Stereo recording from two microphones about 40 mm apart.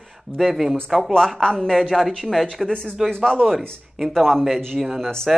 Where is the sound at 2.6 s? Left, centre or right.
Centre.